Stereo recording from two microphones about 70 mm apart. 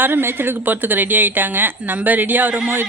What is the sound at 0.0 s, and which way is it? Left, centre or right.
Speech, right.